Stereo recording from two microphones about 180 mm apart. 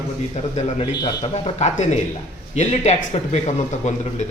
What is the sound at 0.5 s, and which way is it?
Speech, 35° left (ahead or behind).